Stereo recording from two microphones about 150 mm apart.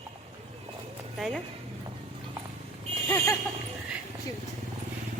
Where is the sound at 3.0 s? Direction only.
20° left (ahead or behind).